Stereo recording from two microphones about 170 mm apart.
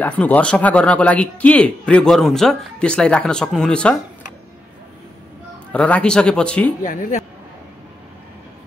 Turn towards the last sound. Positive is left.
turn(degrees=50)  # may be behind; listen again after turning